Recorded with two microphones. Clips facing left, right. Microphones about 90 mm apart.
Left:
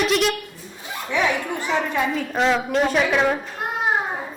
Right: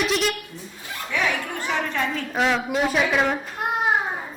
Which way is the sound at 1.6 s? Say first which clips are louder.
Left 3 dB; 10° left (ahead or behind).